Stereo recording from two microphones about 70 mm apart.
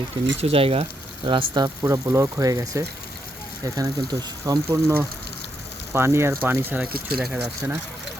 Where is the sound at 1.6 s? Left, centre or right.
Right.